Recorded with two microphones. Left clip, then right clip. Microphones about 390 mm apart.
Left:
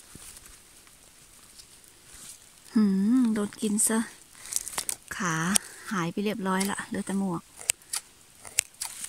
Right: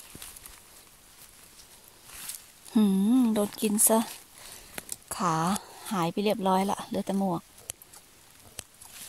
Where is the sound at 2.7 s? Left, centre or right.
Centre.